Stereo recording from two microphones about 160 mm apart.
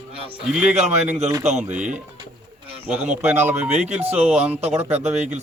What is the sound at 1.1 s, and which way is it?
Speech, 45° right (ahead or behind).